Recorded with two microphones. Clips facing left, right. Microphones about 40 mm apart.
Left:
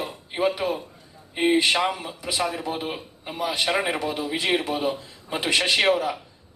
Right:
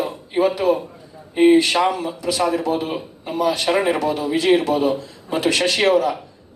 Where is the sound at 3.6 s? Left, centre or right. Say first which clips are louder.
Right 6 dB; centre.